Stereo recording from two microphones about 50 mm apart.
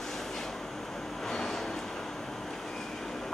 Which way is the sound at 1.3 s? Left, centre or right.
Centre.